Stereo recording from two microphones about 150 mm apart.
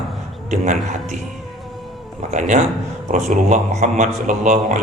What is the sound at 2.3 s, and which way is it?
A man's voice, 55° right (ahead or behind).